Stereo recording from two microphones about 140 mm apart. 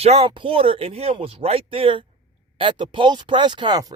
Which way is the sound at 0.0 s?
45° right (ahead or behind).